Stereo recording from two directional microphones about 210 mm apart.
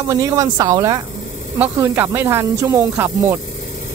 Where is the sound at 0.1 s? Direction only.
15° right (ahead or behind).